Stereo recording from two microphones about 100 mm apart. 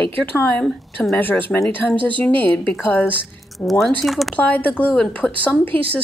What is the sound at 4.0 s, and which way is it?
Speech, centre (ahead or behind).